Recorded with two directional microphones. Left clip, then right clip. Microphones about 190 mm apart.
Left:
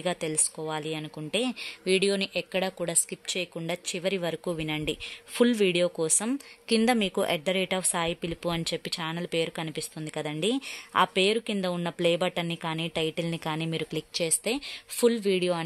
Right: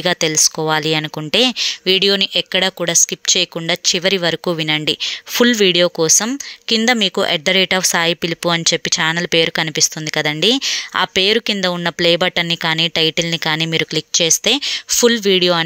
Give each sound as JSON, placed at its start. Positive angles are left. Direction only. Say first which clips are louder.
{"t": 0.0, "sound": "speech", "louder": "right 15 dB", "side_deg": -25}